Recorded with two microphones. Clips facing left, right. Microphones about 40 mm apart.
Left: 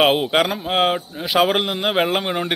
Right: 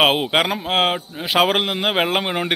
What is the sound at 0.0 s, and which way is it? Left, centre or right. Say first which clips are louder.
A man's voice: even; centre.